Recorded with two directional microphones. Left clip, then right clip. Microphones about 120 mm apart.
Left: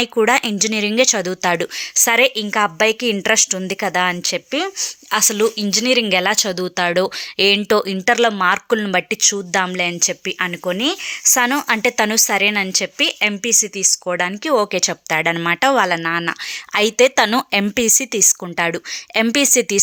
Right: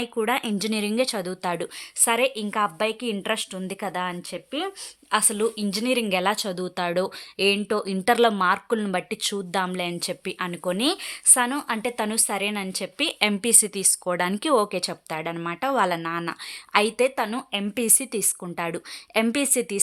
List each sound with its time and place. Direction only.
0.0 s speech: 25° left (ahead or behind)
0.6 s a woman's voice: 10° left (ahead or behind)
8.1 s a woman's voice: 5° right (ahead or behind); by 10.9 s 10° left (ahead or behind)
11.3 s speech: 30° left (ahead or behind)
12.4 s a woman's voice: 15° left (ahead or behind)
13.1 s speech: centre (ahead or behind)
14.8 s a woman's voice: 15° left (ahead or behind)
17.2 s a woman's voice: 35° left (ahead or behind)
17.7 s a woman's voice: 10° left (ahead or behind)